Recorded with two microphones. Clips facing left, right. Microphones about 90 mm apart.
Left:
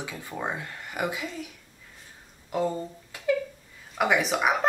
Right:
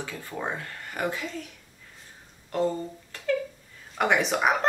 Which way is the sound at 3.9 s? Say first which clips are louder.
Even; 5° left (ahead or behind).